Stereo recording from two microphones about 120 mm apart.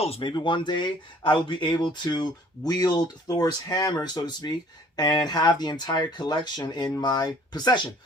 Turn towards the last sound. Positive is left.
turn(degrees=40)  # may be behind; listen again after turning